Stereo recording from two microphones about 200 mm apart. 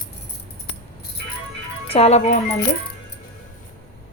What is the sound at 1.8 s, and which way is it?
Speech, 30° left (ahead or behind).